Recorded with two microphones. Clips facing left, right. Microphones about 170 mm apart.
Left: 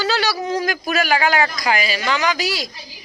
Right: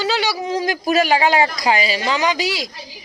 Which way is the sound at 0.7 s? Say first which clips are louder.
Right 7 dB; 30° right (ahead or behind).